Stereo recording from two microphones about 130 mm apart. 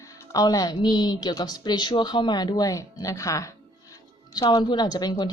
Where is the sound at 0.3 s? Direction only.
30° left (ahead or behind).